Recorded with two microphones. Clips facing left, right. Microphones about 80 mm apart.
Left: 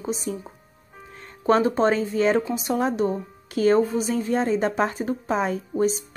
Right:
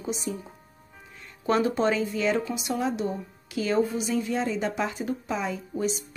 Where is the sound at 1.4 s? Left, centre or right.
Left.